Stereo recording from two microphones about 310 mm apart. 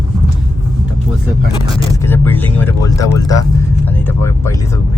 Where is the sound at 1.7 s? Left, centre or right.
Centre.